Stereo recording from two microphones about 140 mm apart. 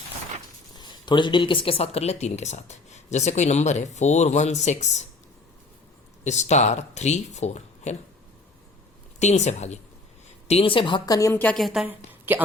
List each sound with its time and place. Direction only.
0.8 s speech: 30° left (ahead or behind); by 4.9 s 55° left (ahead or behind)
6.2 s speech: 55° left (ahead or behind)
9.1 s speech: 55° left (ahead or behind)
10.5 s a woman's voice: 40° left (ahead or behind); by 11.5 s 15° left (ahead or behind)
11.5 s a woman's voice: centre (ahead or behind)
11.9 s a woman's voice: 15° right (ahead or behind)